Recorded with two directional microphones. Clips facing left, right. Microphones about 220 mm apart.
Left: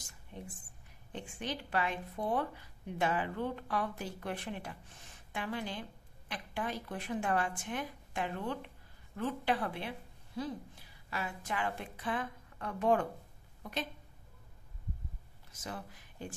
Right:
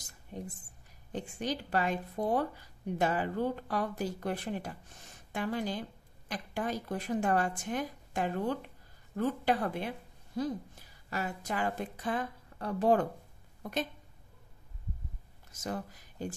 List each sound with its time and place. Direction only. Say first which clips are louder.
0.3 s a woman's voice: right 5 dB; 40° right (ahead or behind)
13.6 s a sound: right 5 dB; 45° right (ahead or behind)
15.5 s speech: right 6 dB; 45° right (ahead or behind)